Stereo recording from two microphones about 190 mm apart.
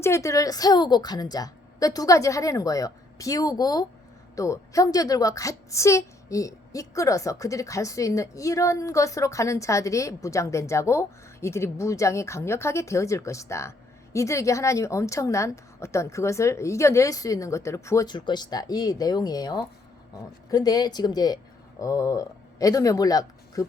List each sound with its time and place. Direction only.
0.0 s a woman's voice: 15° left (ahead or behind)